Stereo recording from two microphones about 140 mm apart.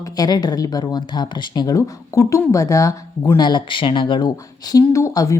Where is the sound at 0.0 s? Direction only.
30° left (ahead or behind).